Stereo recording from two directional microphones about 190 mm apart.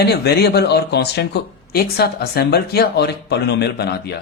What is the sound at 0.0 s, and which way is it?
Speech, 60° left (ahead or behind).